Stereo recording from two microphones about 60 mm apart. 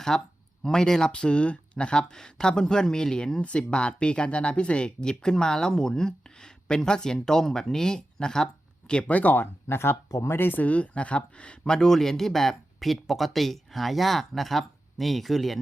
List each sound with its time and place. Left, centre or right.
0.1 s speech: centre